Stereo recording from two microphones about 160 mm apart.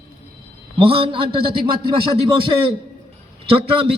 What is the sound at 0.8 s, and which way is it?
A man's voice, 35° right (ahead or behind).